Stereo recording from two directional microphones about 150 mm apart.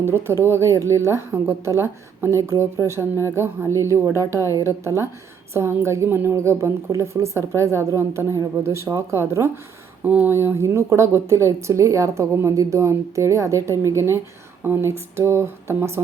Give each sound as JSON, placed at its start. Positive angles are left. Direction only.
{"t": 0.0, "sound": "a woman's voice", "side_deg": -15}